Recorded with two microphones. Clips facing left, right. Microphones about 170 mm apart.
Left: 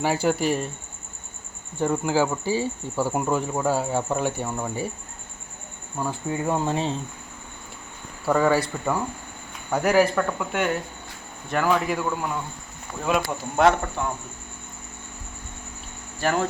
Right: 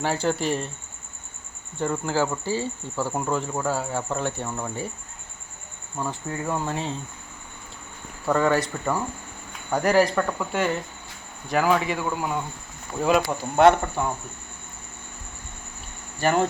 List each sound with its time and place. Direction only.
0.0 s speech: 10° left (ahead or behind)
1.8 s speech: 15° left (ahead or behind)
6.0 s speech: 10° left (ahead or behind)
8.2 s speech: 5° left (ahead or behind)
16.1 s speech: centre (ahead or behind)